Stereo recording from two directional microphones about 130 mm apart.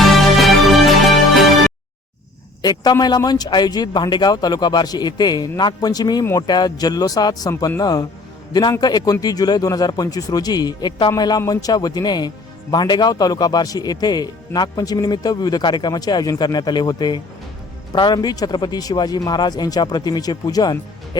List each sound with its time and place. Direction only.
0.0 s music: centre (ahead or behind)
2.6 s a man's voice: 30° left (ahead or behind)